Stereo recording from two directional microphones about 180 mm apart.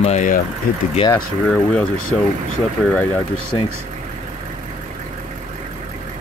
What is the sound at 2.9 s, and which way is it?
Speech, 10° left (ahead or behind).